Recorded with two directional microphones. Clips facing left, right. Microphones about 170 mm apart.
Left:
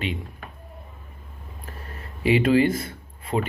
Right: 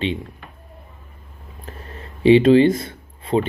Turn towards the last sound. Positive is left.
turn(degrees=-25)  # may be behind; listen again after turning